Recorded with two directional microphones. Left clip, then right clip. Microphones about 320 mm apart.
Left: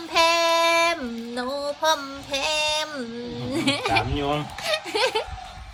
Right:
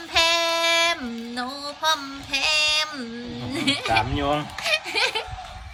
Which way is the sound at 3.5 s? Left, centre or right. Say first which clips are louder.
Even; centre.